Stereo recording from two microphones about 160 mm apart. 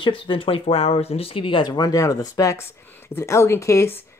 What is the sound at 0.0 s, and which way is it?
Speech, 30° left (ahead or behind).